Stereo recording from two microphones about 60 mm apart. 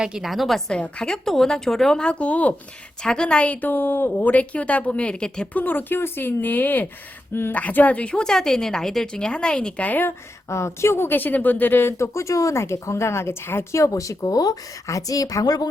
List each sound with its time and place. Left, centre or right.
0.0 s a woman's voice: centre
0.3 s a woman's voice: centre
0.7 s a woman's voice: centre
3.0 s a woman's voice: centre
5.5 s a woman's voice: left
10.5 s speech: left
12.1 s speech: left
13.7 s a woman's voice: left